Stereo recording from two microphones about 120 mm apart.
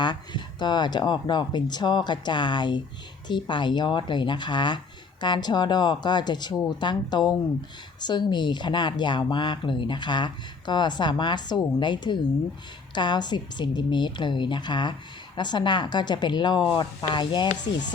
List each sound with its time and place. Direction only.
0.0 s speech: 40° left (ahead or behind)